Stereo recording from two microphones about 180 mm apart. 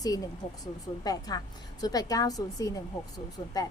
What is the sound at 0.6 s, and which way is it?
A woman's voice, 20° left (ahead or behind).